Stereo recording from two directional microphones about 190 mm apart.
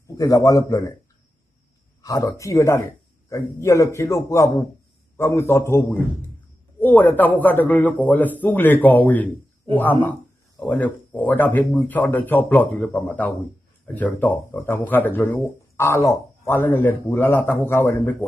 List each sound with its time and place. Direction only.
0.1 s speech: 20° left (ahead or behind)
2.0 s speech: 20° left (ahead or behind)
10.6 s speech: 10° left (ahead or behind)